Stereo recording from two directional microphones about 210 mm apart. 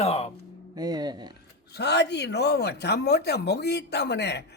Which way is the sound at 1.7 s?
55° left (ahead or behind).